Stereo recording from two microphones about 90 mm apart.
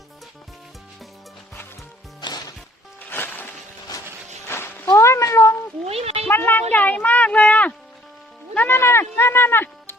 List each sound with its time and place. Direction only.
3.0 s music: 20° left (ahead or behind)
4.4 s cat: 25° left (ahead or behind)
6.2 s a sound: 20° left (ahead or behind)
8.5 s music: 25° left (ahead or behind)